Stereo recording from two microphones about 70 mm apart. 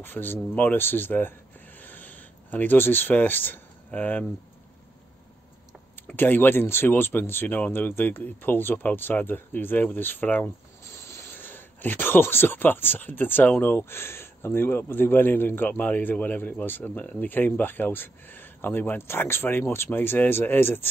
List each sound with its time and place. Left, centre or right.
0.0 s speech: left
1.8 s a sound: left
6.0 s speech: left
10.9 s rub: left
11.3 s speech: left